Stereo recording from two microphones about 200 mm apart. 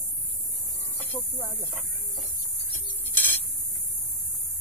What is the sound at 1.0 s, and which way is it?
Speech, 10° left (ahead or behind).